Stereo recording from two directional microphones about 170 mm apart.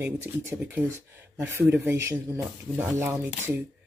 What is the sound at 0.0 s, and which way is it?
Speech, 15° right (ahead or behind).